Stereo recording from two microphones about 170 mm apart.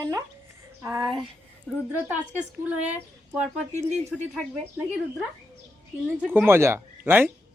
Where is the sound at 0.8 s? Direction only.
20° right (ahead or behind).